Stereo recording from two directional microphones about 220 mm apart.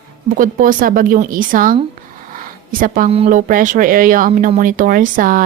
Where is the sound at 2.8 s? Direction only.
40° right (ahead or behind).